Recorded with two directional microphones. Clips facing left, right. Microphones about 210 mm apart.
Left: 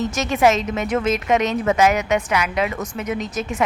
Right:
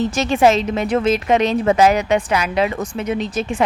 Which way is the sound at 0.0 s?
30° right (ahead or behind).